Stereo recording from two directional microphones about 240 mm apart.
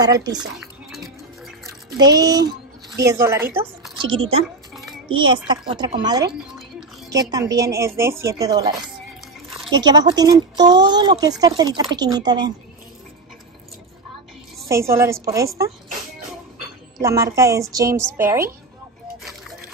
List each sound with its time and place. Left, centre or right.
0.0 s speech: centre
2.0 s a woman's voice: centre
4.0 s a woman's voice: right
14.7 s speech: centre
17.0 s speech: centre